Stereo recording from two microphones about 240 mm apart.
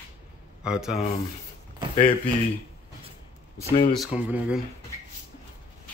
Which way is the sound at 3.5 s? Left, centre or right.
Centre.